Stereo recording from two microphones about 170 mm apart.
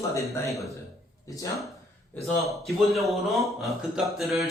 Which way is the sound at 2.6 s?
Centre (ahead or behind).